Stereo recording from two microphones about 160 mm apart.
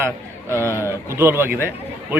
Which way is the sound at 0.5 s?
15° left (ahead or behind).